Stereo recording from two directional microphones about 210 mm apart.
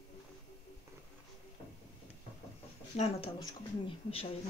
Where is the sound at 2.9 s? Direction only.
30° left (ahead or behind).